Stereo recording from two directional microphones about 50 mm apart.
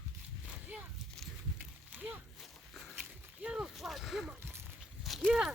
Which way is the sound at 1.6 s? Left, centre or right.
Right.